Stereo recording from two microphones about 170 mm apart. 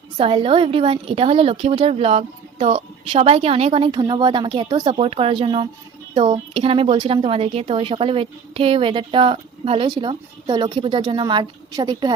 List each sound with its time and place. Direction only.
0.2 s a woman's voice: 30° right (ahead or behind)